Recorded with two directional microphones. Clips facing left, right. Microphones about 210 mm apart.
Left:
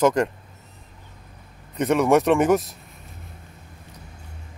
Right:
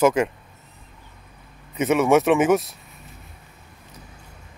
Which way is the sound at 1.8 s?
5° right (ahead or behind).